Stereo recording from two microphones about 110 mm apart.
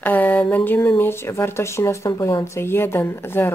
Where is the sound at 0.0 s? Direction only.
15° left (ahead or behind).